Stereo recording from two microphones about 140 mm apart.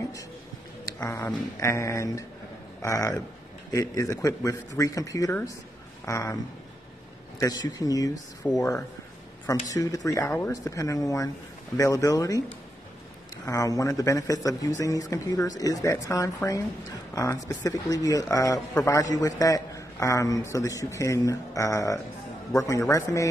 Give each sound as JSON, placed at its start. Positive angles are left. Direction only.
{"t": 0.9, "sound": "a man's voice", "side_deg": 20}
{"t": 7.3, "sound": "a man's voice", "side_deg": 25}
{"t": 8.4, "sound": "speech", "side_deg": 10}
{"t": 9.7, "sound": "a man's voice", "side_deg": 25}
{"t": 10.2, "sound": "a man's voice", "side_deg": 15}
{"t": 13.5, "sound": "a man's voice", "side_deg": 25}